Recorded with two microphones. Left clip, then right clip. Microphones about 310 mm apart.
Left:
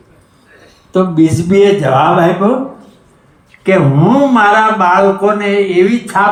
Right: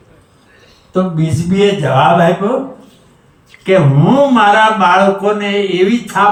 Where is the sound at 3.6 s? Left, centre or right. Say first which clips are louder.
Left 1 dB; centre.